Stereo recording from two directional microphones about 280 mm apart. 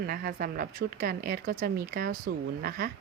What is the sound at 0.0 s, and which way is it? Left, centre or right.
A woman's voice, right.